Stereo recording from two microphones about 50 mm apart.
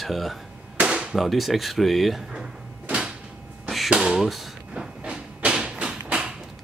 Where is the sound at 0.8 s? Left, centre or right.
Centre.